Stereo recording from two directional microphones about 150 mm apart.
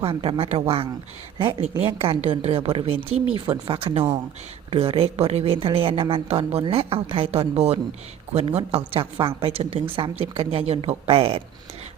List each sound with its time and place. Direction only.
0.0 s a woman's voice: 35° right (ahead or behind)